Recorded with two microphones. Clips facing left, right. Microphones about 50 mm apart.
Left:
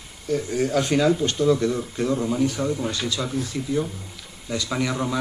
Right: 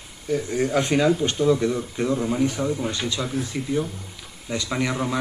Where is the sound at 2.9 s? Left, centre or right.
Right.